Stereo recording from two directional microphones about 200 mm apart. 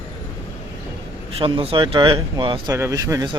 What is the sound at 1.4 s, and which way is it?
A man's voice, 30° right (ahead or behind).